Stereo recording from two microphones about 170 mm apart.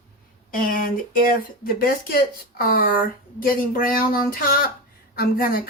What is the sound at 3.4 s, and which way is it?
Speech, 55° left (ahead or behind).